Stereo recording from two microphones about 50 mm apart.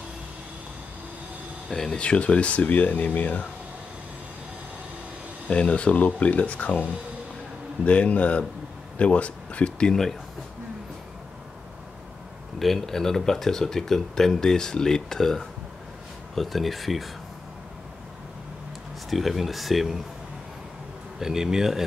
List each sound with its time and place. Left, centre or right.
1.7 s speech: centre; by 3.4 s left
5.5 s speech: left
12.5 s speech: centre
19.0 s speech: centre
21.2 s speech: centre